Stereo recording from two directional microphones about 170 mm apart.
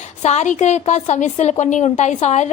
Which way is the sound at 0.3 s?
45° left (ahead or behind).